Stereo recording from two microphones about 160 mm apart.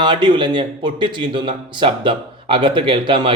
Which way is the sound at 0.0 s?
30° right (ahead or behind).